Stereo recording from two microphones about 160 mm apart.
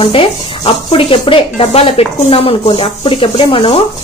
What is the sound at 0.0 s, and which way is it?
A woman's voice, 35° left (ahead or behind).